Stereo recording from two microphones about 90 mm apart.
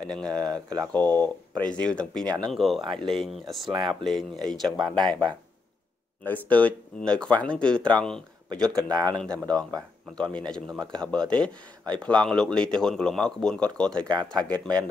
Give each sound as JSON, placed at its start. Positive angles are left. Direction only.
{"t": 0.0, "sound": "speech", "side_deg": 10}
{"t": 0.9, "sound": "speech", "side_deg": 20}
{"t": 2.8, "sound": "speech", "side_deg": -60}
{"t": 3.2, "sound": "speech", "side_deg": 0}
{"t": 4.7, "sound": "speech", "side_deg": -50}
{"t": 6.2, "sound": "speech", "side_deg": 20}
{"t": 14.5, "sound": "speech", "side_deg": -50}